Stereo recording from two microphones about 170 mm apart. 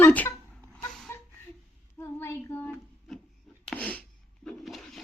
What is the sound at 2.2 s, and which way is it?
Child singing, 15° left (ahead or behind).